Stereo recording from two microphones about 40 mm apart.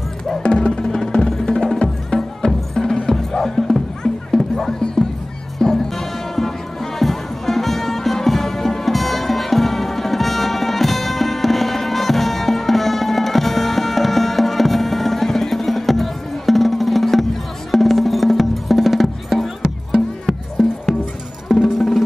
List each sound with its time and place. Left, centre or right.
0.4 s music: left; by 19.5 s centre
21.5 s music: centre